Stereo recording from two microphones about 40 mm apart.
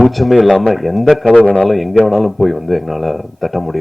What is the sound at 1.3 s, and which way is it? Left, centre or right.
Speech, left.